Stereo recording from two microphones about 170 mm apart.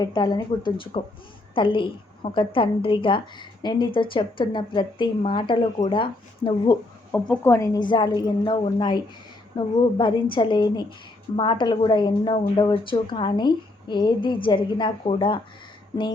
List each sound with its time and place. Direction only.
0.0 s a woman's voice: 25° left (ahead or behind)
7.1 s a woman's voice: 10° left (ahead or behind); by 15.4 s 30° left (ahead or behind)